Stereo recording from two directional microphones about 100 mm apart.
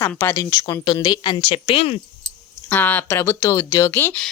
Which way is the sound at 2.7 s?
20° left (ahead or behind).